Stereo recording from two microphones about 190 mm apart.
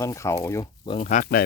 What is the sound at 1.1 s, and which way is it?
Speech, 45° left (ahead or behind).